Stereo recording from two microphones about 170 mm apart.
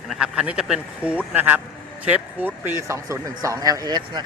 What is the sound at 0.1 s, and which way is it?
A man's voice, 5° right (ahead or behind).